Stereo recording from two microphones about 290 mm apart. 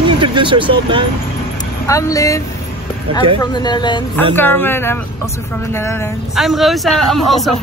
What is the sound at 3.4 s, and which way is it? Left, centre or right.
Speech, centre.